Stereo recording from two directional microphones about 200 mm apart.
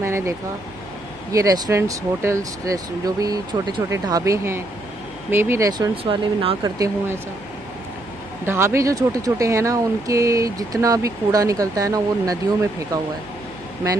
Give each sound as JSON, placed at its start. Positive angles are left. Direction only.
{"t": 0.0, "sound": "air conditioning", "side_deg": -15}
{"t": 1.3, "sound": "speech", "side_deg": -15}
{"t": 8.5, "sound": "speech", "side_deg": -15}